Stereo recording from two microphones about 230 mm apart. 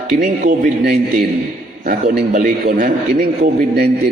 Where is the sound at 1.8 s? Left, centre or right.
Right.